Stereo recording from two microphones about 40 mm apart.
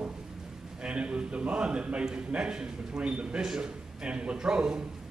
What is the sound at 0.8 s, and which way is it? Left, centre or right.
A man's voice, right.